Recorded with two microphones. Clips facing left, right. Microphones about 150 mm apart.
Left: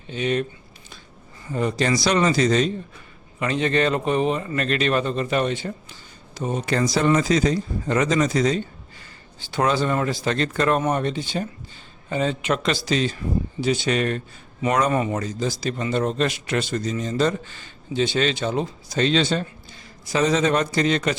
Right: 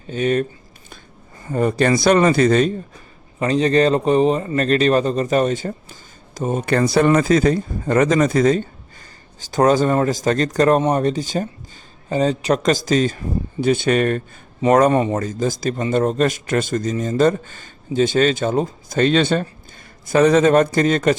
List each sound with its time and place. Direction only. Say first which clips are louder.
0.1 s speech: right 5 dB; 45° right (ahead or behind)
1.5 s speech: right 5 dB; 50° right (ahead or behind)
3.4 s speech: right 6 dB; 35° right (ahead or behind)